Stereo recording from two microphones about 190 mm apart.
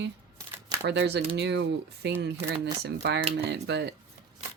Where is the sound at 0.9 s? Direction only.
65° right (ahead or behind).